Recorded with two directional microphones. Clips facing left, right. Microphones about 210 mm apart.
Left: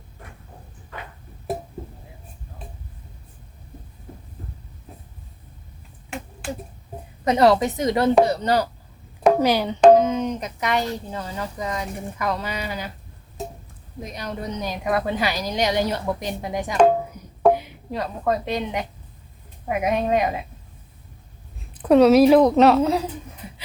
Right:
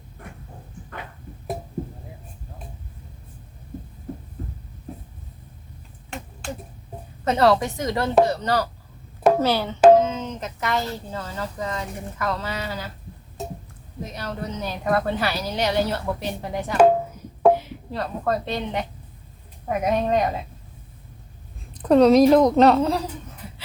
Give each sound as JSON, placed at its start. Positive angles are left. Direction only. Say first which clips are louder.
{"t": 7.3, "sound": "a woman's voice", "louder": "left 2 dB", "side_deg": 20}
{"t": 14.0, "sound": "speech", "louder": "even", "side_deg": 15}
{"t": 21.7, "sound": "a woman's voice", "louder": "left 1 dB", "side_deg": 5}